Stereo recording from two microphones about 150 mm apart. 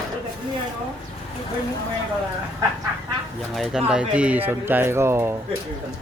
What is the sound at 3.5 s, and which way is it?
Speech, 5° right (ahead or behind).